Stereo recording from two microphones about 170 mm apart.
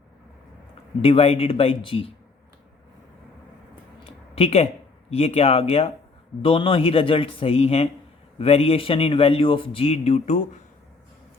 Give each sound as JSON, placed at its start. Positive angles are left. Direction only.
{"t": 1.0, "sound": "speech", "side_deg": 35}
{"t": 4.4, "sound": "speech", "side_deg": 35}